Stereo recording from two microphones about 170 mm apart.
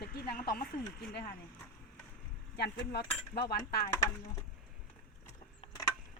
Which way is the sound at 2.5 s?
75° left (ahead or behind).